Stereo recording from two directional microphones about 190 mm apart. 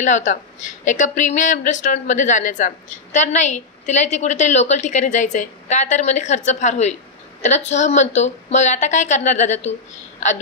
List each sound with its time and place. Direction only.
0.0 s a woman's voice: 40° left (ahead or behind)